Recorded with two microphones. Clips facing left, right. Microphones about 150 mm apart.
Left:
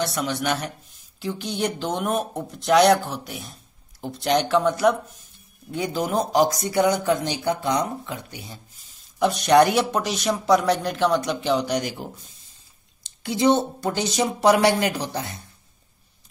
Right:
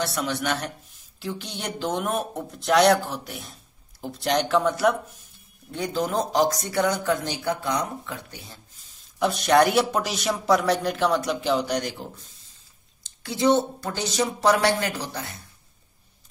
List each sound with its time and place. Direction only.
0.0 s speech: centre (ahead or behind); by 8.5 s 15° left (ahead or behind)
9.2 s speech: centre (ahead or behind)
13.2 s speech: 20° left (ahead or behind)